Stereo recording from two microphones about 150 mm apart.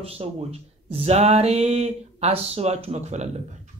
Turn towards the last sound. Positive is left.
turn(degrees=-50)  # may be behind; listen again after turning